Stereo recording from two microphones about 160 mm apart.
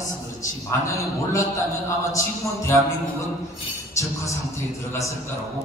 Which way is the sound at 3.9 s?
20° left (ahead or behind).